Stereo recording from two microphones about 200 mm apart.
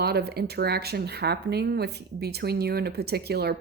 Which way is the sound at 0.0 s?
50° right (ahead or behind).